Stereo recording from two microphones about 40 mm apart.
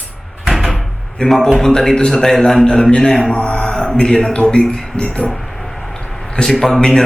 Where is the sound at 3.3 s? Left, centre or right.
Left.